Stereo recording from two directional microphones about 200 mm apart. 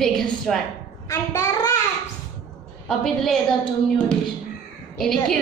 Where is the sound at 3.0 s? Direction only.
Centre (ahead or behind).